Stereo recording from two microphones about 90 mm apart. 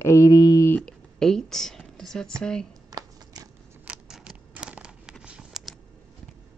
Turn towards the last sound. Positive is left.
turn(degrees=-5)  # may be behind; listen again after turning